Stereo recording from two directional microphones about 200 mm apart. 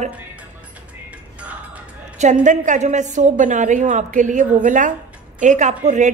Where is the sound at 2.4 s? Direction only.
40° right (ahead or behind).